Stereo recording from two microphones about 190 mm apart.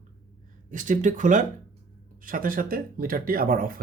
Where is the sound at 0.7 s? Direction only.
40° right (ahead or behind).